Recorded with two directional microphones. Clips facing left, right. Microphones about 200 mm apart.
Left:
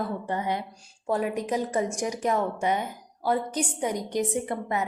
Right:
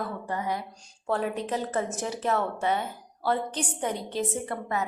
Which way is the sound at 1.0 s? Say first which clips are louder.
Left 1 dB; 10° left (ahead or behind).